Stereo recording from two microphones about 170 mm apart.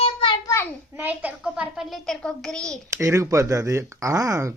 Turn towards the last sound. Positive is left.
turn(degrees=-20)  # may be behind; listen again after turning